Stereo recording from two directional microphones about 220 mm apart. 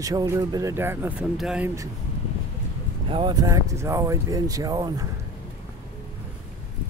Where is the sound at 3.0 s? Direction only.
20° right (ahead or behind).